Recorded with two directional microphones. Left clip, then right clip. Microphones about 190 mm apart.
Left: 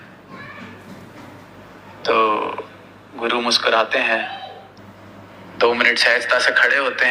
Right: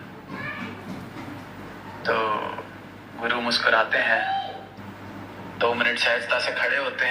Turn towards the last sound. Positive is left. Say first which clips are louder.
# left 8 dB
turn(degrees=40)  # may be behind; listen again after turning